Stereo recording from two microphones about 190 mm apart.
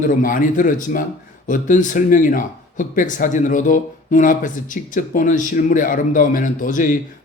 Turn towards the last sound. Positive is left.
turn(degrees=45)  # may be behind; listen again after turning